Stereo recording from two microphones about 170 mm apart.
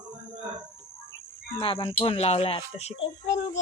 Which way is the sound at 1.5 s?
30° left (ahead or behind).